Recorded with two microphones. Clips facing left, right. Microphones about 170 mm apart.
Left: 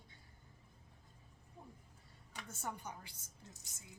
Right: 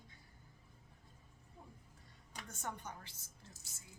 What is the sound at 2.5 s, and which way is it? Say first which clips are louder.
Speech: left 1 dB; 5° left (ahead or behind).